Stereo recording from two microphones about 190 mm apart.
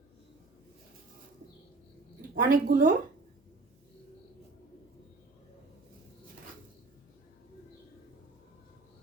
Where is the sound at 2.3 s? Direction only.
45° right (ahead or behind).